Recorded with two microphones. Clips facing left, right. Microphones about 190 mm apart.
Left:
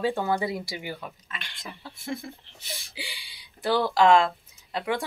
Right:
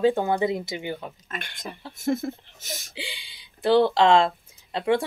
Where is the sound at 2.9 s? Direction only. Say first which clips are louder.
Right 4 dB; 20° right (ahead or behind).